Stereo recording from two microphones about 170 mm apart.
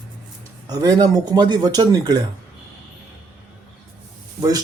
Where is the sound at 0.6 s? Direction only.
20° right (ahead or behind).